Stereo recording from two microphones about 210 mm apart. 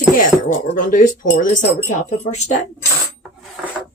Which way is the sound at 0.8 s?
40° left (ahead or behind).